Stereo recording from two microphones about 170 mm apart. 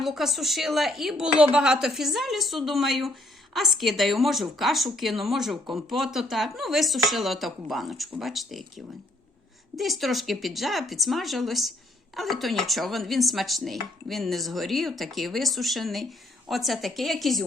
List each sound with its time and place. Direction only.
0.0 s speech: centre (ahead or behind)